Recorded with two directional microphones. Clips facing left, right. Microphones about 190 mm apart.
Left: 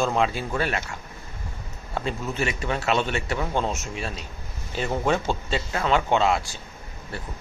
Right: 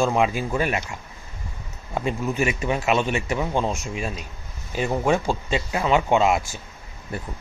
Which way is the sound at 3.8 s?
15° right (ahead or behind).